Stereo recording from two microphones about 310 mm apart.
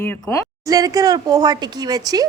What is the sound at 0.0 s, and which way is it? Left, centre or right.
Speech, centre.